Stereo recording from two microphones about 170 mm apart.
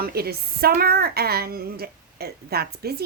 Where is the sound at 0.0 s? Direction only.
65° right (ahead or behind).